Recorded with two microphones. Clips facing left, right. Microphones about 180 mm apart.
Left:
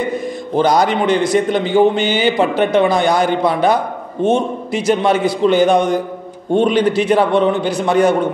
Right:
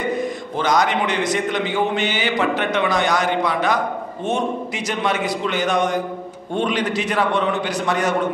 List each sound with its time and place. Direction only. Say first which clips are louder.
0.6 s a man's voice: left 5 dB; 35° left (ahead or behind)